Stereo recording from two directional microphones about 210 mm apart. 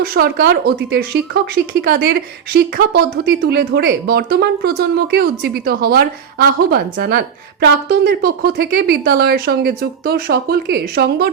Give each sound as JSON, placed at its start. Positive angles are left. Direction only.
{"t": 0.0, "sound": "a woman's voice", "side_deg": -45}